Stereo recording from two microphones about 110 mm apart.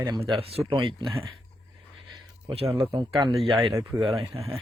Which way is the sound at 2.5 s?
55° right (ahead or behind).